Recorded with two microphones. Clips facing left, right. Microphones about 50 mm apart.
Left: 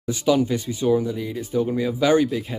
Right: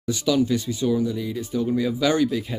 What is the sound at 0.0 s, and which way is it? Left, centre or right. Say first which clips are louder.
Speech: left 2 dB; left.